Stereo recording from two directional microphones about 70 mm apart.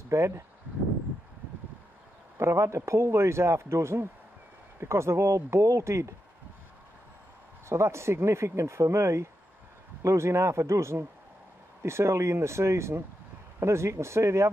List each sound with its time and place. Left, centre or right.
0.1 s a man's voice: right
2.3 s a man's voice: right
7.7 s a man's voice: right